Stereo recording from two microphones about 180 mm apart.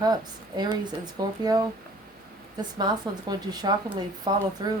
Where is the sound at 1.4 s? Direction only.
20° right (ahead or behind).